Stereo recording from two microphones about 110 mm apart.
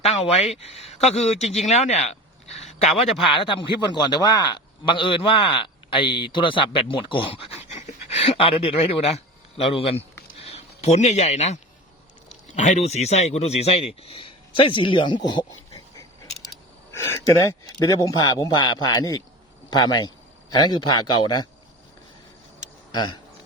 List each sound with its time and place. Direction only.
0.0 s speech: 70° left (ahead or behind)
3.2 s a man's voice: 50° left (ahead or behind)
16.9 s a man's voice: 25° left (ahead or behind)
22.9 s speech: 40° left (ahead or behind)